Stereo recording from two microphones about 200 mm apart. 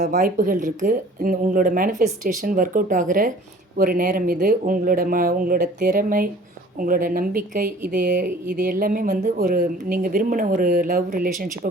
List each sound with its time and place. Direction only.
0.0 s speech: 40° right (ahead or behind)